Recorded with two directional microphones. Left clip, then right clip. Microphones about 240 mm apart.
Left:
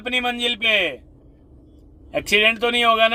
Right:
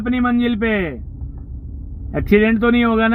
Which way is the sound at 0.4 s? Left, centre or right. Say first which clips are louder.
Left 1 dB; centre.